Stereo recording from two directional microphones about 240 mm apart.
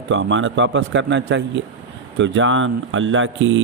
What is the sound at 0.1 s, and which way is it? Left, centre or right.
A man's voice, right.